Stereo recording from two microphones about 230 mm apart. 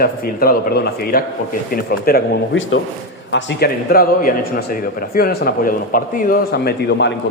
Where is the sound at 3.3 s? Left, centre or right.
Left.